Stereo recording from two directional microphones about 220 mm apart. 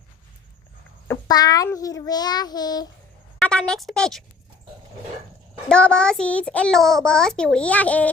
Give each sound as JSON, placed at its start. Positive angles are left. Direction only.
{"t": 1.0, "sound": "child singing", "side_deg": 15}
{"t": 3.3, "sound": "speech", "side_deg": 5}
{"t": 5.6, "sound": "a child's voice", "side_deg": 5}